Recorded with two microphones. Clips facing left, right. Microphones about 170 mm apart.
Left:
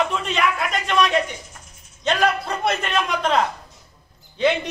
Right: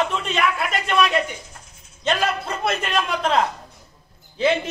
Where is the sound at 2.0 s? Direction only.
Centre (ahead or behind).